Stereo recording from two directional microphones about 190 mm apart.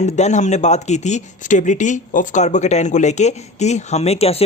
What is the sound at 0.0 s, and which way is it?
Speech, 35° left (ahead or behind).